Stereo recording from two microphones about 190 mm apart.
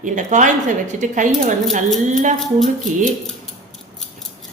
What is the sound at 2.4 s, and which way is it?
Speech, centre (ahead or behind).